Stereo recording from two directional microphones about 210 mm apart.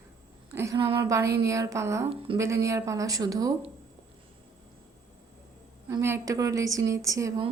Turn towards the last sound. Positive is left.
turn(degrees=-15)  # may be behind; listen again after turning